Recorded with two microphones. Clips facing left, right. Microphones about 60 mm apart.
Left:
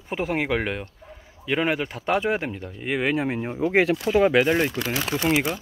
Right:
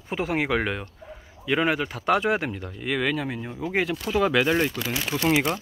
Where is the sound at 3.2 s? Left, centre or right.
Left.